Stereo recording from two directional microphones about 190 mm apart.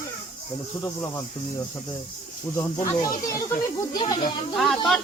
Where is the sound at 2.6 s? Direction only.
15° left (ahead or behind).